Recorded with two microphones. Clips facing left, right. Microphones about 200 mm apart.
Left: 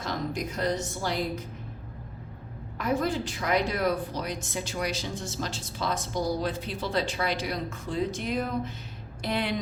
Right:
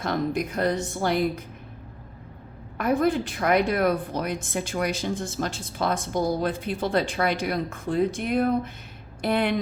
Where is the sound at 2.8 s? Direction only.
55° right (ahead or behind).